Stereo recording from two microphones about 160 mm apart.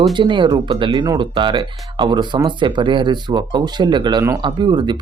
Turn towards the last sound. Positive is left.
turn(degrees=-30)  # may be behind; listen again after turning